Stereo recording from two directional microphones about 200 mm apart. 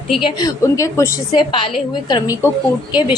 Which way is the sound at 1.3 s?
25° left (ahead or behind).